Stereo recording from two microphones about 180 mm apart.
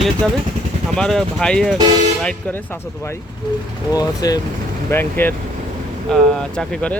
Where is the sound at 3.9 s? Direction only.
20° left (ahead or behind).